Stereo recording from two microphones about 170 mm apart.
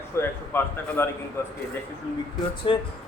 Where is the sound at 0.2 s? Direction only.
15° left (ahead or behind).